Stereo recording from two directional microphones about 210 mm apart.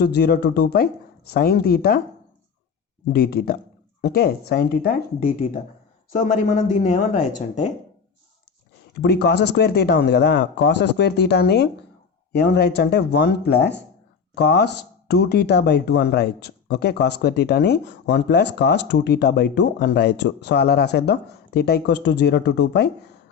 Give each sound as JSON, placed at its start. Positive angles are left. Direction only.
{"t": 0.0, "sound": "speech", "side_deg": 50}
{"t": 3.1, "sound": "speech", "side_deg": 45}
{"t": 9.0, "sound": "speech", "side_deg": 50}